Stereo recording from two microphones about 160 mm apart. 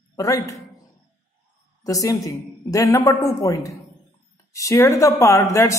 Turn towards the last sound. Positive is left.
turn(degrees=20)  # may be behind; listen again after turning